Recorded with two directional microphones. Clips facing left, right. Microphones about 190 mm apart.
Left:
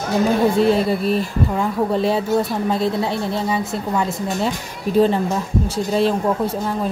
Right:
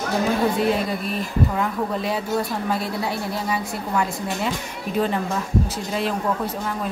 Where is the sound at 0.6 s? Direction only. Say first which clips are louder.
Left 6 dB; 30° left (ahead or behind).